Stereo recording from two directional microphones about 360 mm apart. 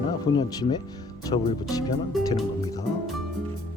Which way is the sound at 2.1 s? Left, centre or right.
Centre.